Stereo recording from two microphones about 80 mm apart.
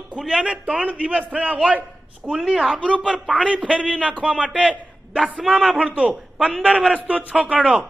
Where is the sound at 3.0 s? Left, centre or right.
Centre.